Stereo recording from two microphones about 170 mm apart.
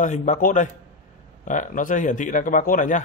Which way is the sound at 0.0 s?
45° left (ahead or behind).